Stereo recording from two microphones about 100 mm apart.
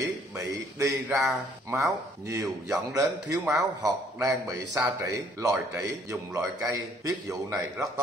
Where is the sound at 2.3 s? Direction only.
35° right (ahead or behind).